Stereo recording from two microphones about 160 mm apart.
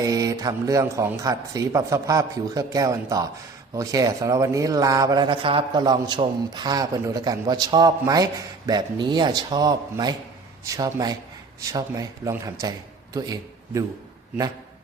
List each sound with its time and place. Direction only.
0.0 s a man's voice: 20° right (ahead or behind)